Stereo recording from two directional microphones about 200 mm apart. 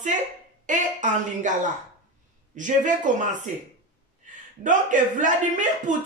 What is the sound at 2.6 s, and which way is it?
Speech, 40° right (ahead or behind).